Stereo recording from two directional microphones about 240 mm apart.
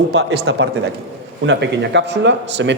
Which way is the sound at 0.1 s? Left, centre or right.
Right.